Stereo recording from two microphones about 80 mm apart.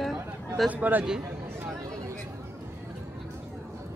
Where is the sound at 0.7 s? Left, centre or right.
Right.